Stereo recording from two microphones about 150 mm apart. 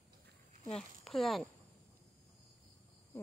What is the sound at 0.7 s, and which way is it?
Speech, centre (ahead or behind).